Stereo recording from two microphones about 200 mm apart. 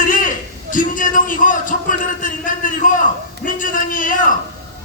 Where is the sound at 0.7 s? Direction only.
40° left (ahead or behind).